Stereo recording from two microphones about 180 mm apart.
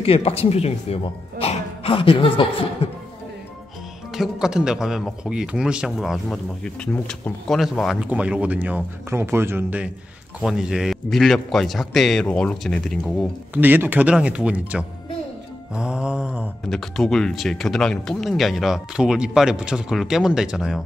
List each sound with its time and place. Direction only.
0.0 s speech: 35° left (ahead or behind)
4.1 s a man's voice: centre (ahead or behind)
13.6 s a man's voice: 10° right (ahead or behind)